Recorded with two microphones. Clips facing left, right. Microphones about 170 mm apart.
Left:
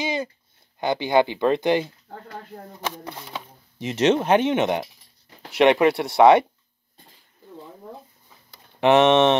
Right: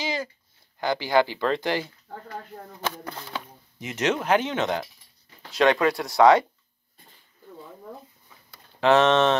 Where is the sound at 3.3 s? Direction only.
25° left (ahead or behind).